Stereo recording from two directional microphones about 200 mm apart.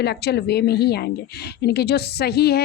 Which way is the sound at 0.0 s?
55° left (ahead or behind).